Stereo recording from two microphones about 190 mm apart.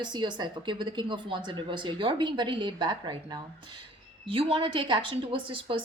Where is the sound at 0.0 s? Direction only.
25° right (ahead or behind).